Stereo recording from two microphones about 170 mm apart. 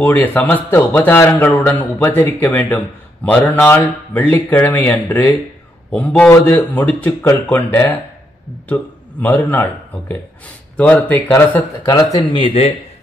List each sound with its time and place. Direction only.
0.0 s a man's voice: 10° left (ahead or behind)
11.9 s speech: 25° left (ahead or behind)